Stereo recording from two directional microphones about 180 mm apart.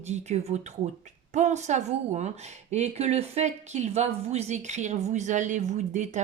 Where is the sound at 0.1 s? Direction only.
35° right (ahead or behind).